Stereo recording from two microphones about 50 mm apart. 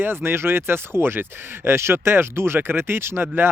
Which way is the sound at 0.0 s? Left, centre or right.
Right.